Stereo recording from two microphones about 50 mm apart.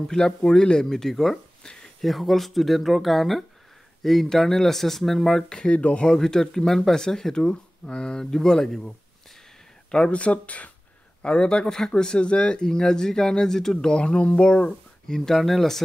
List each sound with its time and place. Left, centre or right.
0.1 s speech: centre
1.6 s a sound: centre
2.0 s speech: centre; by 6.0 s left
6.0 s speech: centre; by 10.7 s left
11.2 s speech: centre
15.1 s speech: centre